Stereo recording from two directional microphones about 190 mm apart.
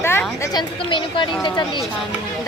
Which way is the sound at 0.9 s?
25° left (ahead or behind).